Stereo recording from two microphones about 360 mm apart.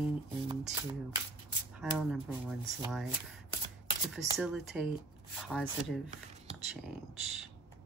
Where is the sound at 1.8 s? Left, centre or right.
Centre.